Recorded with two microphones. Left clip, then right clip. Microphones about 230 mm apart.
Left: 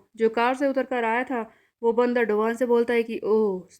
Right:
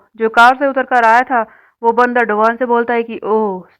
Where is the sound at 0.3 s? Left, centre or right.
Centre.